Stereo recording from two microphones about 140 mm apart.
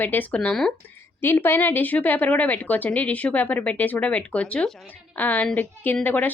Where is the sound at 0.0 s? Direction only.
10° left (ahead or behind).